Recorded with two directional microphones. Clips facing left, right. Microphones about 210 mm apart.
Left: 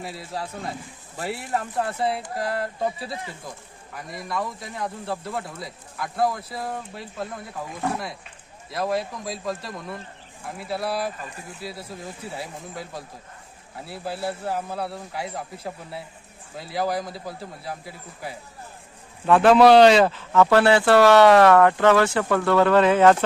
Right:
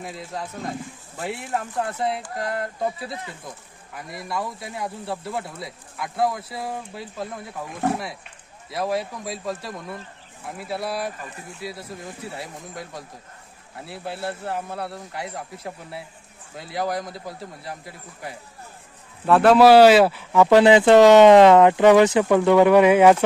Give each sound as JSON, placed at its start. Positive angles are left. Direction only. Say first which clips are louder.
{"t": 0.0, "sound": "speech", "louder": "even", "side_deg": 5}
{"t": 8.7, "sound": "speech", "louder": "even", "side_deg": 0}